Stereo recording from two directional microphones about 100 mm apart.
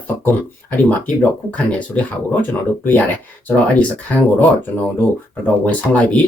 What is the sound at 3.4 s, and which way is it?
Speech, 15° left (ahead or behind).